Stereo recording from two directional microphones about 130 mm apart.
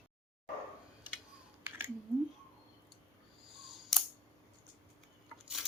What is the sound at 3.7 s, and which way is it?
Camera, centre (ahead or behind).